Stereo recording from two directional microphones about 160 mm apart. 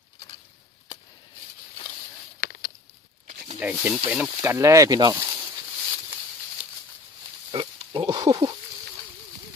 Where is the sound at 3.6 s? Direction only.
10° right (ahead or behind); by 5.2 s 25° right (ahead or behind).